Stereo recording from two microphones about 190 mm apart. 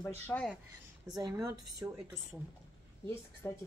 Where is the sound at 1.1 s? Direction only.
15° right (ahead or behind).